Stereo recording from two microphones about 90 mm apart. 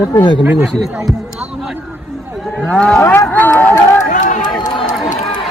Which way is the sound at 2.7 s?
10° left (ahead or behind).